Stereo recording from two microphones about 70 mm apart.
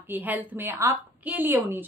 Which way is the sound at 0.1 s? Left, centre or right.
Right.